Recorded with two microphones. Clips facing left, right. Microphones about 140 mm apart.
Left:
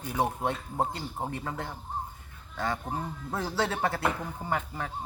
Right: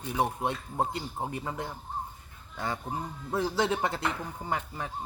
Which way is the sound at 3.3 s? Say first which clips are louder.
Right 3 dB; 15° right (ahead or behind).